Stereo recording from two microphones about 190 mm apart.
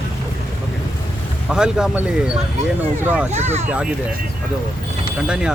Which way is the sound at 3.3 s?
35° right (ahead or behind).